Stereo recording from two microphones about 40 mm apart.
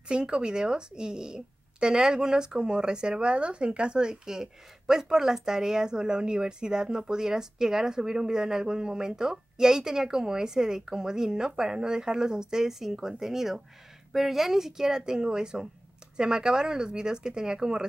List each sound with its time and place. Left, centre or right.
0.1 s a woman's voice: right